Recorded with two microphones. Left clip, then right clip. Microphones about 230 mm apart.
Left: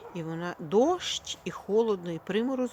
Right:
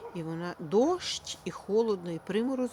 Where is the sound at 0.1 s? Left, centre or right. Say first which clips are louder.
Left 3 dB; centre.